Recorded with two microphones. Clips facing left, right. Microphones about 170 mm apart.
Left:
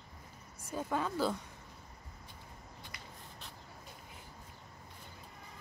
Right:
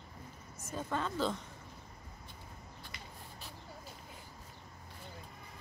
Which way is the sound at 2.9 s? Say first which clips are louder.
Right 3 dB; 25° right (ahead or behind).